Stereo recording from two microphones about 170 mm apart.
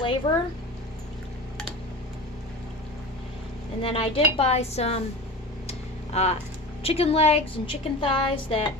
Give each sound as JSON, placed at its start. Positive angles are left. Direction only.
{"t": 0.0, "sound": "speech", "side_deg": 30}
{"t": 3.8, "sound": "a woman's voice", "side_deg": 35}
{"t": 5.6, "sound": "a sound", "side_deg": 40}
{"t": 6.8, "sound": "a woman's voice", "side_deg": 35}